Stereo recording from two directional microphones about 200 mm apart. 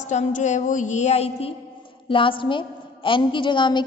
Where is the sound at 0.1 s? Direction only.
35° left (ahead or behind).